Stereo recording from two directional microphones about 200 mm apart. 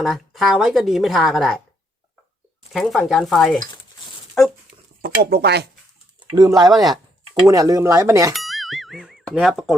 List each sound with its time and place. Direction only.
0.0 s a woman's voice: centre (ahead or behind)
2.7 s a woman's voice: centre (ahead or behind)
5.0 s speech: 55° right (ahead or behind)
6.1 s typing: 20° right (ahead or behind)
6.7 s a woman's voice: centre (ahead or behind)
7.4 s speech: 15° right (ahead or behind)
8.3 s music: centre (ahead or behind)